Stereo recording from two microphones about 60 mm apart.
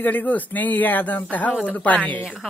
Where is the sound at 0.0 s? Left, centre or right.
Left.